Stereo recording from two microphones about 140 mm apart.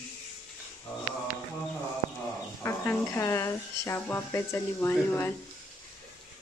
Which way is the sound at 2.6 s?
20° left (ahead or behind).